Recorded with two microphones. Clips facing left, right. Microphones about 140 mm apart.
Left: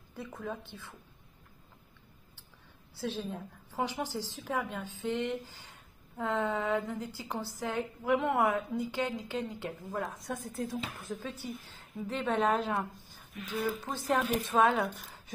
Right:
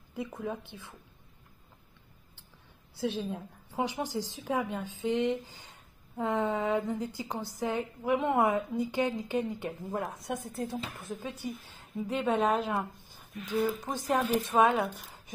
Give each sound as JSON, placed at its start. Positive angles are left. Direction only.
{"t": 0.1, "sound": "a woman's voice", "side_deg": -15}
{"t": 3.0, "sound": "a woman's voice", "side_deg": -15}
{"t": 9.9, "sound": "a woman's voice", "side_deg": -25}
{"t": 15.0, "sound": "a sound", "side_deg": -10}